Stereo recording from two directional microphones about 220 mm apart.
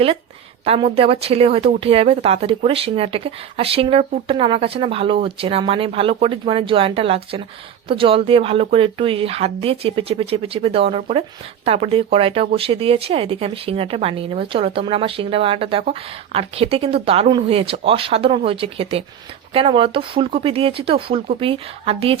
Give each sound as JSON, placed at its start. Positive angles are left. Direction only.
{"t": 0.6, "sound": "speech", "side_deg": -25}